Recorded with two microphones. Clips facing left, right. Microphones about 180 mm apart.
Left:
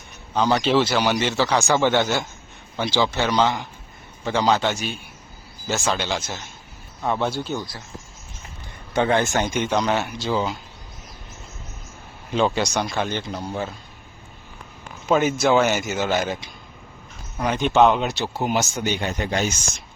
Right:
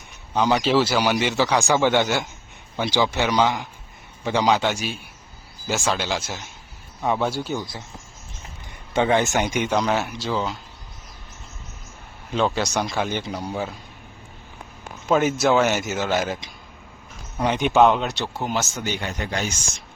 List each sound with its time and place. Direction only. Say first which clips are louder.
0.3 s a man's voice: even; 15° right (ahead or behind)
8.9 s speech: even; 15° right (ahead or behind); by 10.6 s 5° left (ahead or behind)
12.3 s a man's voice: left 1 dB; centre (ahead or behind)
14.8 s speech: even; centre (ahead or behind)
17.4 s a man's voice: right 1 dB; 15° right (ahead or behind)
17.7 s speech: even; centre (ahead or behind); by 19.5 s 20° left (ahead or behind)